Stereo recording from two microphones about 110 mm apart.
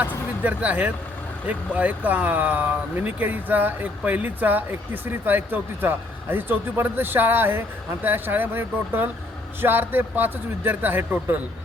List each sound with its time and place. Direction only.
0.4 s a man's voice: 15° right (ahead or behind)